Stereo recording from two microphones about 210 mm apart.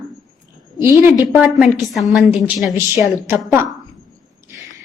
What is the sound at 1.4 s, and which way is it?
A woman's voice, centre (ahead or behind).